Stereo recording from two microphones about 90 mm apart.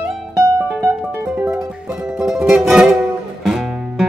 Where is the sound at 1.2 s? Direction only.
30° right (ahead or behind).